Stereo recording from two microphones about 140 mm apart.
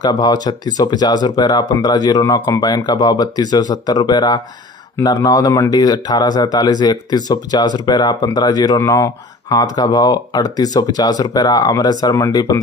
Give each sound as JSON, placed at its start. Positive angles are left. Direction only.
{"t": 0.0, "sound": "speech", "side_deg": 30}